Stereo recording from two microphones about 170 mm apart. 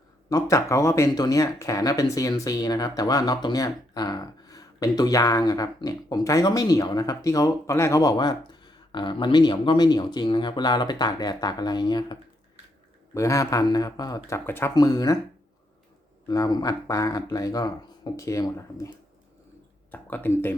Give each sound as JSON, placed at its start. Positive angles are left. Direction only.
{"t": 0.3, "sound": "speech", "side_deg": 20}
{"t": 13.1, "sound": "speech", "side_deg": 20}
{"t": 16.3, "sound": "speech", "side_deg": 20}
{"t": 19.9, "sound": "speech", "side_deg": 10}